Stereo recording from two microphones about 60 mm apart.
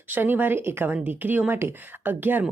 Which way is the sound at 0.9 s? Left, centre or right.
Right.